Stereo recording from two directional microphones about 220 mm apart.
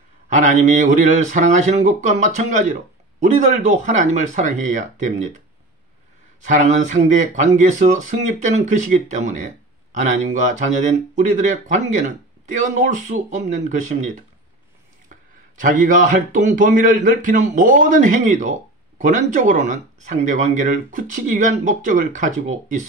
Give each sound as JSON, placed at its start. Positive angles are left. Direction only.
{"t": 0.3, "sound": "speech", "side_deg": -35}
{"t": 6.4, "sound": "speech", "side_deg": -35}
{"t": 15.6, "sound": "speech", "side_deg": -35}